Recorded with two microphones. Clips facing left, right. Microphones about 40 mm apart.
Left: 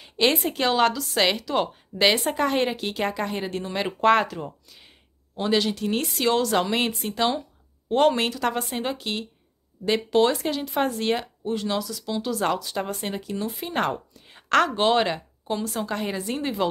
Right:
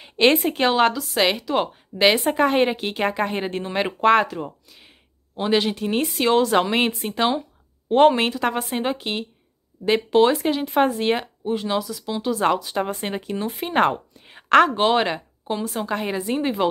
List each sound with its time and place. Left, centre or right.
0.0 s a woman's voice: right
3.8 s speech: centre
5.3 s a woman's voice: right